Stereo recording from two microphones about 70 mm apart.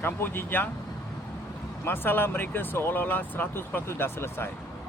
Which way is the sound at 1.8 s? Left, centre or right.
Left.